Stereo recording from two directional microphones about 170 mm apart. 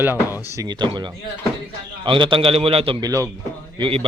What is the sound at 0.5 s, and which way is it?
A man's voice, 25° right (ahead or behind).